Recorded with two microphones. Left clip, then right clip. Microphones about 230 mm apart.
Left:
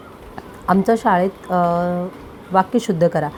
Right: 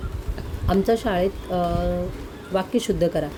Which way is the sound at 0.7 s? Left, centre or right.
Centre.